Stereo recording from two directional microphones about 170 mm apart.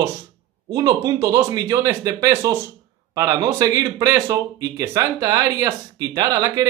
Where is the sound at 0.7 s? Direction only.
20° right (ahead or behind).